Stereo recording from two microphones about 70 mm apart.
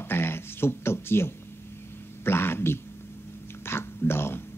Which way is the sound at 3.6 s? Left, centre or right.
Left.